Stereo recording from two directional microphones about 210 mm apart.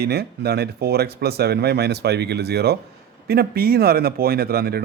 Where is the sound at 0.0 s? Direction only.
50° right (ahead or behind).